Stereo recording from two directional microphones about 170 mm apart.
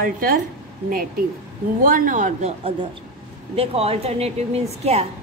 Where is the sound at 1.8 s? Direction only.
50° right (ahead or behind).